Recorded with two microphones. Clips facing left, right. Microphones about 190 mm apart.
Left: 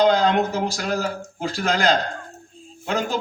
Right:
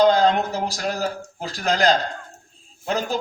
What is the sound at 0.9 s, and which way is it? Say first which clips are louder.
A man's voice: left 1 dB; 35° right (ahead or behind).